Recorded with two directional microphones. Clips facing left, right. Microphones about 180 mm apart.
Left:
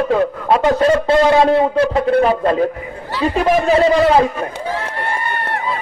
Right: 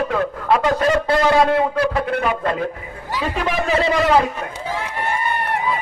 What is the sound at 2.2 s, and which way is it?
A man's voice, 35° left (ahead or behind).